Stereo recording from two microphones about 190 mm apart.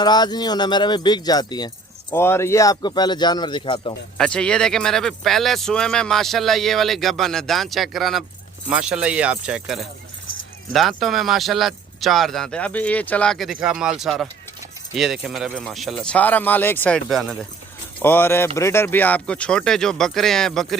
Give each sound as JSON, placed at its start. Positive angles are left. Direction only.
{"t": 0.0, "sound": "a man's voice", "side_deg": 20}
{"t": 4.2, "sound": "speech", "side_deg": 5}
{"t": 18.0, "sound": "speech", "side_deg": 10}